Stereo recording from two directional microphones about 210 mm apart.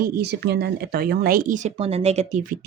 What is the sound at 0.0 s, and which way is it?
Speech, 50° right (ahead or behind).